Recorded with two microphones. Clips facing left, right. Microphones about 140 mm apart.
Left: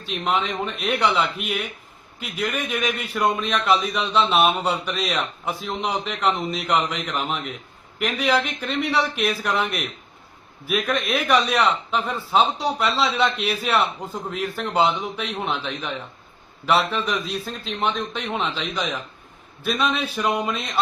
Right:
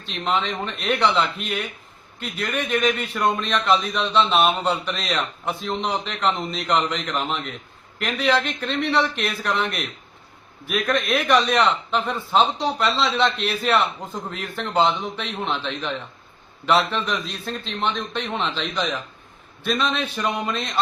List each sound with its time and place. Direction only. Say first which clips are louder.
0.0 s a man's voice: even; 5° left (ahead or behind)